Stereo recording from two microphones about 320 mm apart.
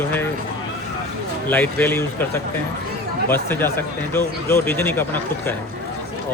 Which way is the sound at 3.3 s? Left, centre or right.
Centre.